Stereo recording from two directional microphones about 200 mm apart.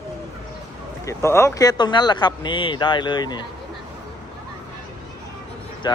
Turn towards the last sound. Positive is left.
turn(degrees=20)  # may be behind; listen again after turning